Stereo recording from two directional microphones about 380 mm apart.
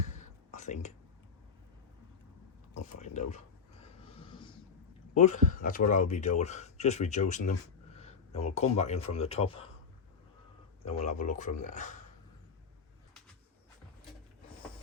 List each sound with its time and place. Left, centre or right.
0.0 s whispering: centre
3.0 s a sound: centre
5.1 s speech: centre
7.9 s a sound: centre
9.1 s speech: centre
10.8 s speech: centre